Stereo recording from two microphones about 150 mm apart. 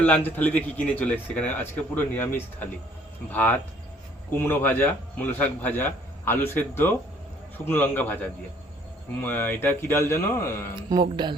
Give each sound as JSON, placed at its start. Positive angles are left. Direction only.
{"t": 0.0, "sound": "speech", "side_deg": 10}
{"t": 9.2, "sound": "speech", "side_deg": 15}
{"t": 10.8, "sound": "speech", "side_deg": -30}